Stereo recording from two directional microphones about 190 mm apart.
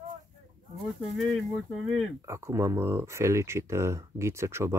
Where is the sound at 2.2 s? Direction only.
15° right (ahead or behind).